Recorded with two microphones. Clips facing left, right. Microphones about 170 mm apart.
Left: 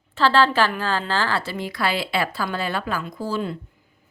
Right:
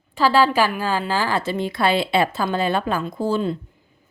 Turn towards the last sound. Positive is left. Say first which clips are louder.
# right 5 dB
turn(degrees=-25)  # may be behind; listen again after turning